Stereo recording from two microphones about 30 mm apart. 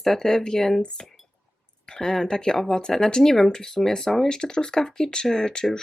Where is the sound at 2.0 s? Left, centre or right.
Centre.